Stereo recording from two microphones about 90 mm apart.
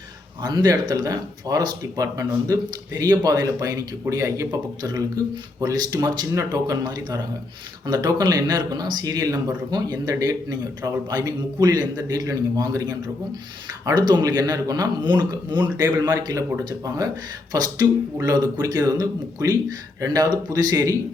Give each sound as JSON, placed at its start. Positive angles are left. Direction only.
{"t": 0.4, "sound": "a man's voice", "side_deg": -45}
{"t": 15.8, "sound": "a man's voice", "side_deg": -40}